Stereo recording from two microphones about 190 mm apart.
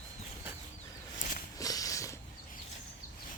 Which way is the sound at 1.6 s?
20° left (ahead or behind).